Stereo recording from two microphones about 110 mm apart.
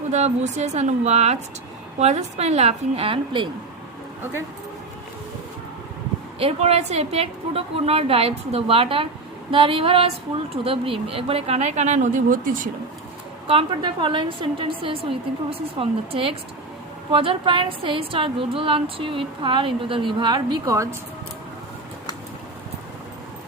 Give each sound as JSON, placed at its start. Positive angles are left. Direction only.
{"t": 0.1, "sound": "a woman's voice", "side_deg": -90}
{"t": 6.4, "sound": "a woman's voice", "side_deg": -75}
{"t": 13.5, "sound": "a woman's voice", "side_deg": -50}